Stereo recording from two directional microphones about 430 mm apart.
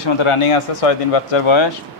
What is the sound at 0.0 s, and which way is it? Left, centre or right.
Speech, left.